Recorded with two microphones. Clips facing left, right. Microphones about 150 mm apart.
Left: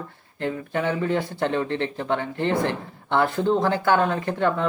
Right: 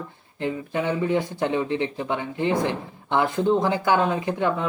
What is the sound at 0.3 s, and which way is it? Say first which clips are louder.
A man's voice: even; 15° right (ahead or behind).